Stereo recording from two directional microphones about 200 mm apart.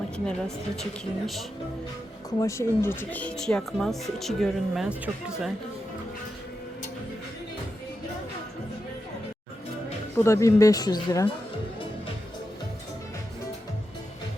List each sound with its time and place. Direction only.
0.3 s speech: centre (ahead or behind)
2.4 s speech: 15° left (ahead or behind); by 5.5 s 5° right (ahead or behind)
10.2 s speech: 15° left (ahead or behind)